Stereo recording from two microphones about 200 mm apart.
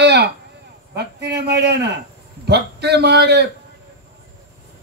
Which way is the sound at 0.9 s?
55° right (ahead or behind).